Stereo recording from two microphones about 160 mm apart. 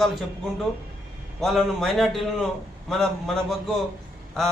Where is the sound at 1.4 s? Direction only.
Centre (ahead or behind).